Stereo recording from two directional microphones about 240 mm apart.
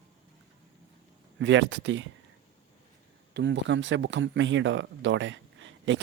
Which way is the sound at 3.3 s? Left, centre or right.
Right.